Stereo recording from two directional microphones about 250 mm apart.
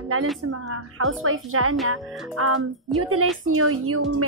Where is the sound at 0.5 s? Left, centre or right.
Right.